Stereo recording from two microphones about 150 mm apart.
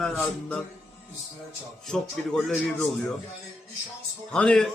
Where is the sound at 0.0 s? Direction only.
5° left (ahead or behind).